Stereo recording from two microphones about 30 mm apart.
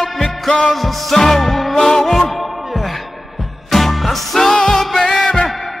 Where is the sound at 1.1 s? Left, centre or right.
Centre.